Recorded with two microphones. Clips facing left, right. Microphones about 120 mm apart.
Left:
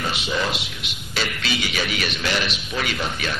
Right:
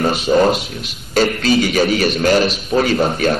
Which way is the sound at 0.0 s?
45° right (ahead or behind).